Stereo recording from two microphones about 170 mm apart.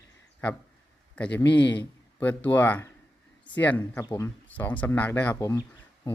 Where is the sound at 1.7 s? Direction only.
10° left (ahead or behind).